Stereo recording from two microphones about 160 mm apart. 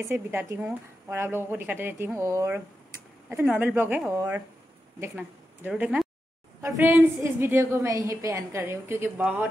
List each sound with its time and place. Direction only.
0.1 s speech: 15° right (ahead or behind)
5.1 s speech: 10° right (ahead or behind)